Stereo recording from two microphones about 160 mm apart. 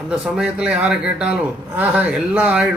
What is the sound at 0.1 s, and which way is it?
A man's voice, 5° right (ahead or behind).